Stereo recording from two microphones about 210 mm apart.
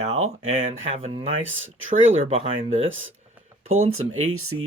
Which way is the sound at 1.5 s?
65° right (ahead or behind).